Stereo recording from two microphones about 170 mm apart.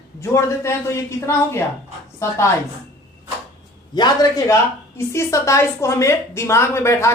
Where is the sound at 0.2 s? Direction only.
15° left (ahead or behind).